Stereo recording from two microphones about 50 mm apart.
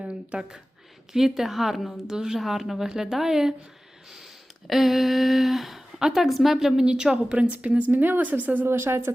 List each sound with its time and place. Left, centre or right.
0.0 s a woman's voice: centre
2.0 s a woman's voice: centre
4.7 s a woman's voice: centre
7.3 s speech: right
8.6 s speech: right